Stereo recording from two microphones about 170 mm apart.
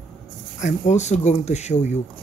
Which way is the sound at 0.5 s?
45° left (ahead or behind).